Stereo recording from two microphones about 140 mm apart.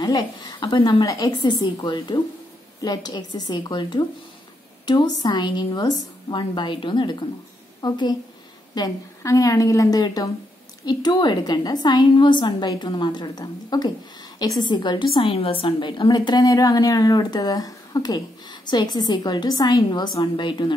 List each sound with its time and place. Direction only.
0.0 s a woman's voice: 25° left (ahead or behind)